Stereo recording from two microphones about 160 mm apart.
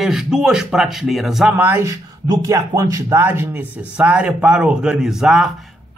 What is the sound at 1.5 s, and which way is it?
Speech, 15° right (ahead or behind).